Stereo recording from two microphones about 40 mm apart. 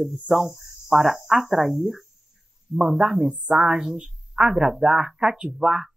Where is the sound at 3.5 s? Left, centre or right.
Centre.